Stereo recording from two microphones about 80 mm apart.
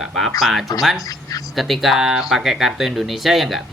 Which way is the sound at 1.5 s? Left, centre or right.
Centre.